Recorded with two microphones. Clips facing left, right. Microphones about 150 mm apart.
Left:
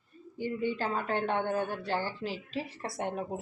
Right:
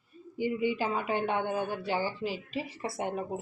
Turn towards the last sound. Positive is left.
turn(degrees=-5)  # may be behind; listen again after turning